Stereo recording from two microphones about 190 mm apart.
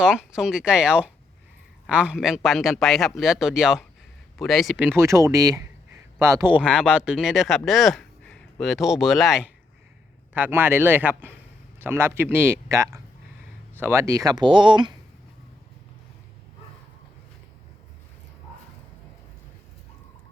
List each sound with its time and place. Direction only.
0.0 s speech: 5° right (ahead or behind); by 14.9 s 25° right (ahead or behind)